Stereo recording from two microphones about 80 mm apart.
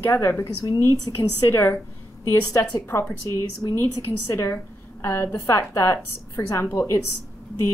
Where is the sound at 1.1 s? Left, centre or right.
Left.